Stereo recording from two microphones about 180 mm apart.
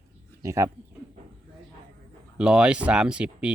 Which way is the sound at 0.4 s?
15° right (ahead or behind).